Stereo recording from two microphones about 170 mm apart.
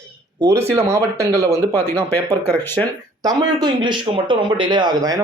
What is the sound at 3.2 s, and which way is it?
Speech, 20° right (ahead or behind).